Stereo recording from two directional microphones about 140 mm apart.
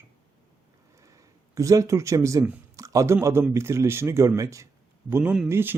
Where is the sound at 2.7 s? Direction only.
25° right (ahead or behind).